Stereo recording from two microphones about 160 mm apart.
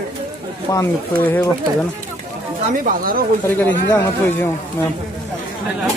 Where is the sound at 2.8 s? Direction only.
65° right (ahead or behind).